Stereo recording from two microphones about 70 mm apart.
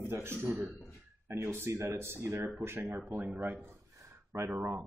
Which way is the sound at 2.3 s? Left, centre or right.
Right.